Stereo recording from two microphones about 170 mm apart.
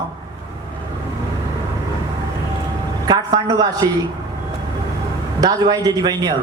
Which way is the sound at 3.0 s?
25° right (ahead or behind).